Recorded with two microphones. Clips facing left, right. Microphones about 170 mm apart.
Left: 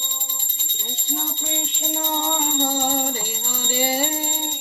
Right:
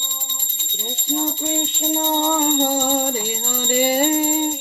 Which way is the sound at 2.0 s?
35° right (ahead or behind).